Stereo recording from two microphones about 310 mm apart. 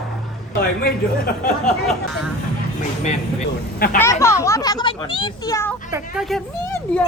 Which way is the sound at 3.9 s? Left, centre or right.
Centre.